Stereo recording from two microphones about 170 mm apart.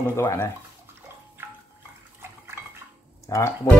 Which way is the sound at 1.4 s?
15° right (ahead or behind).